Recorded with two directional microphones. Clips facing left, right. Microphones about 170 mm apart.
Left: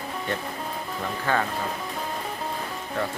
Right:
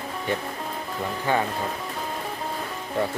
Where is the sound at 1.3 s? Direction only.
15° right (ahead or behind).